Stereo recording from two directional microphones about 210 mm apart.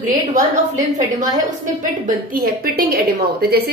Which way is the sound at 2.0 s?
45° right (ahead or behind).